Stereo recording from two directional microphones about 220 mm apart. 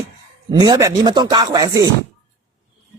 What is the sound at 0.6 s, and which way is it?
Chopping, 15° right (ahead or behind).